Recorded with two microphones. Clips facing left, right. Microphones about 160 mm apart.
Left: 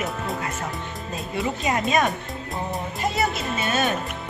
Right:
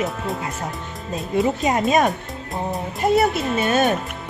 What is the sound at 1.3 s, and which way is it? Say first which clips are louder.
Speech: right 6 dB; 45° right (ahead or behind).